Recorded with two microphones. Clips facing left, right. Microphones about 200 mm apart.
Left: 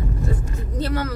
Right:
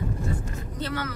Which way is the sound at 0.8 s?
40° left (ahead or behind).